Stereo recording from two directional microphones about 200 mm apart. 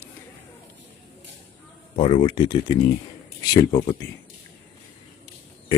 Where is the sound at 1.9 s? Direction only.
25° left (ahead or behind).